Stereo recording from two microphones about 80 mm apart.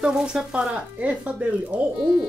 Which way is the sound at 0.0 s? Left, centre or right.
Centre.